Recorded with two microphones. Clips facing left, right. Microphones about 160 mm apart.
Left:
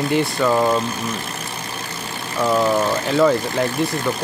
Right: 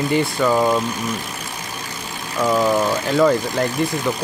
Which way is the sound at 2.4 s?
10° left (ahead or behind).